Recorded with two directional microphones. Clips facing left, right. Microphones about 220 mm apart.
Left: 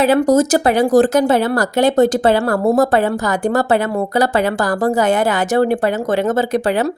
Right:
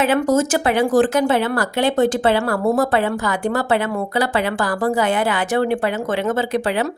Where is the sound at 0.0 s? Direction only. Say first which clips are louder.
Left 4 dB; 35° left (ahead or behind).